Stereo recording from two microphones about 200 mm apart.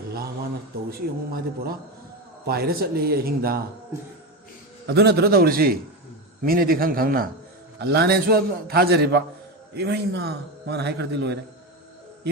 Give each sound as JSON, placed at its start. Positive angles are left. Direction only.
{"t": 0.9, "sound": "a man's voice", "side_deg": -50}
{"t": 4.9, "sound": "a man's voice", "side_deg": -55}